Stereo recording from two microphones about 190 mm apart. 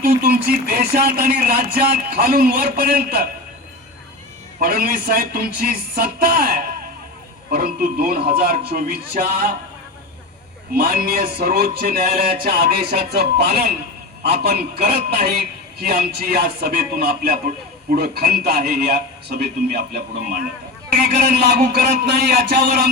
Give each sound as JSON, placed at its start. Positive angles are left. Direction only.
{"t": 0.0, "sound": "speech", "side_deg": -50}
{"t": 4.6, "sound": "speech", "side_deg": -50}
{"t": 10.8, "sound": "a man's voice", "side_deg": -50}